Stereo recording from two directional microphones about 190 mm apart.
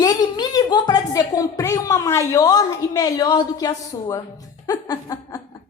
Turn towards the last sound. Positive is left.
turn(degrees=20)  # may be behind; listen again after turning